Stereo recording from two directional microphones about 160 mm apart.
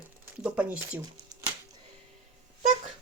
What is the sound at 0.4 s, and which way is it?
Speech, 10° right (ahead or behind).